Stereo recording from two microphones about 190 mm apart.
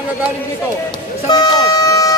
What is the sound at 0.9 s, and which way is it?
Vehicle, 20° left (ahead or behind).